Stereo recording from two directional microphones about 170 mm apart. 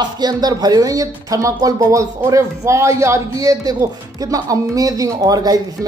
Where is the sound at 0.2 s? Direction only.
25° right (ahead or behind).